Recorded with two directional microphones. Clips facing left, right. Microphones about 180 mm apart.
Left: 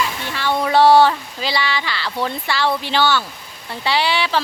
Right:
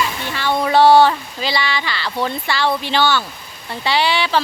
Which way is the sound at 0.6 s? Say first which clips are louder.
Right 1 dB; centre (ahead or behind).